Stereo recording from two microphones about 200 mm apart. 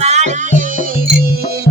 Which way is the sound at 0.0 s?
35° right (ahead or behind).